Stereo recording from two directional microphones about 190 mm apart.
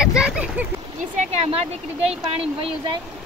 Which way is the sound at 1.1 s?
35° right (ahead or behind).